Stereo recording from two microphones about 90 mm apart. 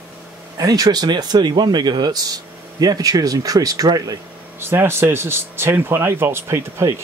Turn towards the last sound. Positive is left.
turn(degrees=-30)  # may be behind; listen again after turning